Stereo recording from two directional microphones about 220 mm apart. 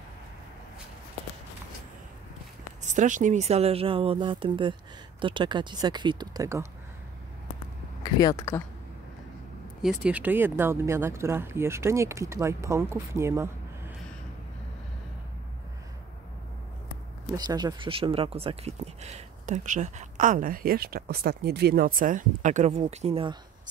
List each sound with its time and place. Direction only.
2.8 s speech: 35° right (ahead or behind); by 6.7 s 15° right (ahead or behind)
8.0 s speech: 15° left (ahead or behind)
9.8 s speech: 5° right (ahead or behind)
17.4 s speech: 20° right (ahead or behind)